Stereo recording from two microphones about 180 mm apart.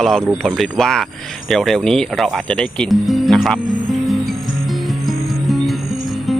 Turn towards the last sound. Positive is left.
turn(degrees=0)  # may be behind; listen again after turning